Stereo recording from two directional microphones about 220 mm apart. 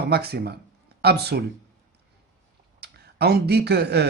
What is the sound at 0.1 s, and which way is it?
Speech, 45° right (ahead or behind).